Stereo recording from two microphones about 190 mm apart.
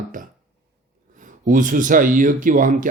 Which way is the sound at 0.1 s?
45° right (ahead or behind).